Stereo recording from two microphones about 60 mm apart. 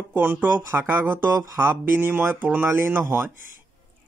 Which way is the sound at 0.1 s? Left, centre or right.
Right.